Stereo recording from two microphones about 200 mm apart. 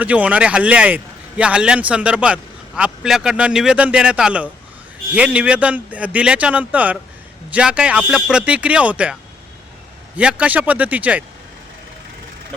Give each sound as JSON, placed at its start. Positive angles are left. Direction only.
{"t": 0.0, "sound": "a man's voice", "side_deg": -5}
{"t": 10.2, "sound": "a man's voice", "side_deg": -5}